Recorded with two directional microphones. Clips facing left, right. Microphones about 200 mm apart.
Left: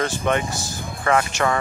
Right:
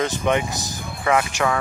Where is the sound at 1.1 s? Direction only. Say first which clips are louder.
Left 1 dB; 5° right (ahead or behind).